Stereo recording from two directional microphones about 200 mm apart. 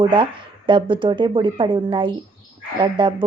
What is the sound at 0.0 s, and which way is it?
Speech, 25° right (ahead or behind).